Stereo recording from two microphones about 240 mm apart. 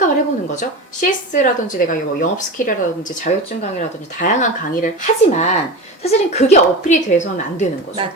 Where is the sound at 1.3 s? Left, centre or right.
Left.